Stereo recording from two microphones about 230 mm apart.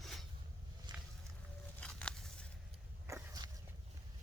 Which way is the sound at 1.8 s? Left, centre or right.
Centre.